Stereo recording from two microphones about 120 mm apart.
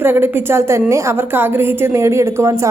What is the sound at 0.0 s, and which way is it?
A woman's voice, 20° right (ahead or behind).